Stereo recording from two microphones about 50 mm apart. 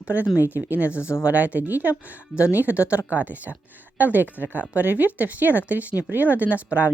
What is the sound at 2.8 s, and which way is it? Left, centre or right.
Speech, left.